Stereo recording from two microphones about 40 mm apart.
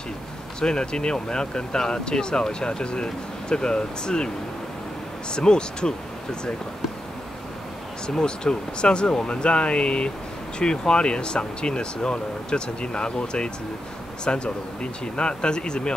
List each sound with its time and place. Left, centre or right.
0.6 s speech: centre
5.3 s speech: left
8.1 s speech: centre